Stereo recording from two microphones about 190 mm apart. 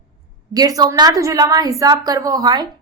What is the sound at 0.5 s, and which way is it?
A woman's voice, 20° right (ahead or behind).